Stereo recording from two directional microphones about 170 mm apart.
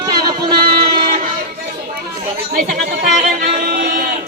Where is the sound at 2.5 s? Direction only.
60° right (ahead or behind).